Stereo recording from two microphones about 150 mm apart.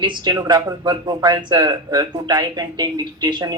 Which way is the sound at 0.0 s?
30° right (ahead or behind).